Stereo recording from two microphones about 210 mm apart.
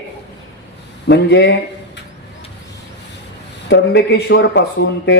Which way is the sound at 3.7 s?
55° left (ahead or behind).